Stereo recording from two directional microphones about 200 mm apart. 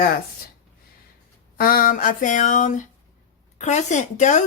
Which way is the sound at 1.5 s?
45° left (ahead or behind).